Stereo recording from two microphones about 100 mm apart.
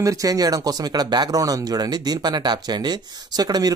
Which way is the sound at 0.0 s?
35° right (ahead or behind).